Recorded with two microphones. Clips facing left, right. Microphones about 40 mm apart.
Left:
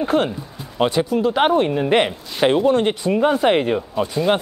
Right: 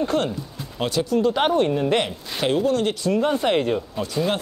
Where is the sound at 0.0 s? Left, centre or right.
Centre.